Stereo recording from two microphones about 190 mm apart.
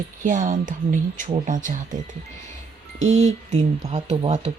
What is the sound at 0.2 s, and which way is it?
Speech, 45° right (ahead or behind).